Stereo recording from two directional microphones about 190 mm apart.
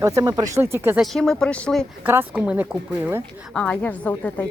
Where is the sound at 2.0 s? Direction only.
10° right (ahead or behind).